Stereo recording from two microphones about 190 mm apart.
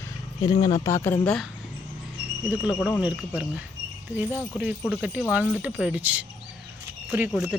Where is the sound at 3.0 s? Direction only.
5° right (ahead or behind).